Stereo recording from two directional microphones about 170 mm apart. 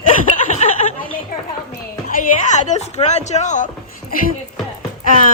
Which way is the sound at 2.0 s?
50° left (ahead or behind).